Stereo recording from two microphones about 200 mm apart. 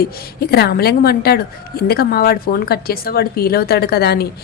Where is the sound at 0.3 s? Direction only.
50° left (ahead or behind).